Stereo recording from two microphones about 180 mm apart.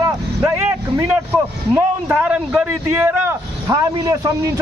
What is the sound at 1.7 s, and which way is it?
A man's voice, 5° right (ahead or behind).